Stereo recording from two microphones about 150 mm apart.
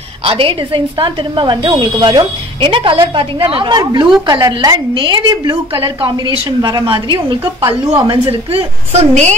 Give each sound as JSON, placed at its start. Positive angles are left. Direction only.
{"t": 0.2, "sound": "a woman's voice", "side_deg": -40}